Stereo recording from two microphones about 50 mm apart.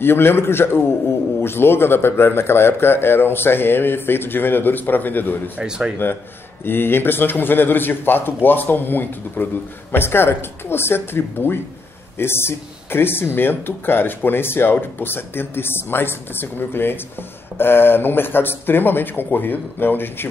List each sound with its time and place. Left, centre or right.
0.0 s a man's voice: left
5.6 s speech: centre
6.6 s a man's voice: left